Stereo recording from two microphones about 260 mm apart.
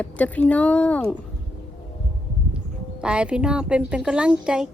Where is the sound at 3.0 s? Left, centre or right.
Centre.